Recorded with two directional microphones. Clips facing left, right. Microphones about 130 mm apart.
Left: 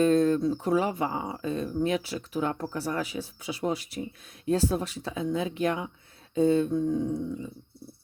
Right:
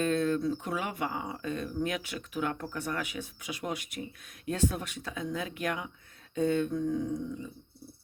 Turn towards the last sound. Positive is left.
turn(degrees=30)  # may be behind; listen again after turning